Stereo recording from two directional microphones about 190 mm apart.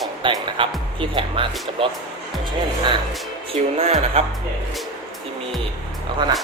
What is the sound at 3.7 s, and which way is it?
Speech, 30° right (ahead or behind).